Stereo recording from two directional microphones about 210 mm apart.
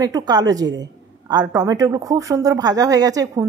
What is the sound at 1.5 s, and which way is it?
A woman's voice, 15° right (ahead or behind).